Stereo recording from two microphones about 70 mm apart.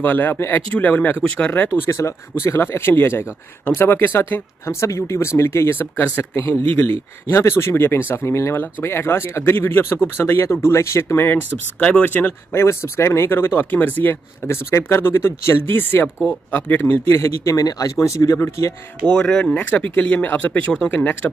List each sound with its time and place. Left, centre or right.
0.0 s speech: left
1.9 s speech: left
7.2 s speech: left
11.8 s speech: left
17.6 s speech: left
19.0 s speech: centre